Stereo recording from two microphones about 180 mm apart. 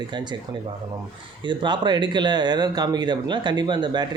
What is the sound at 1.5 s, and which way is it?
Speech, 25° right (ahead or behind).